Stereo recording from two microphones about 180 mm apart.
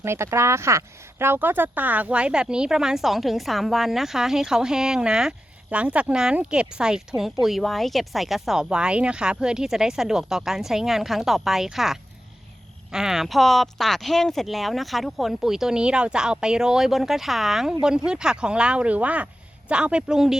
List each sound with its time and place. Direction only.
0.0 s speech: 15° right (ahead or behind)